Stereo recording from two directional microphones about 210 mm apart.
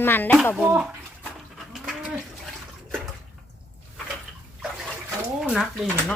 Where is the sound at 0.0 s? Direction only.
10° left (ahead or behind).